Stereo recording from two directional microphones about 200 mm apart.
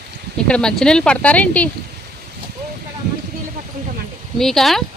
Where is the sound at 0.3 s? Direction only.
5° left (ahead or behind).